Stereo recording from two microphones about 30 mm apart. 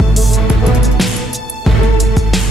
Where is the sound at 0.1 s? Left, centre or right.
Centre.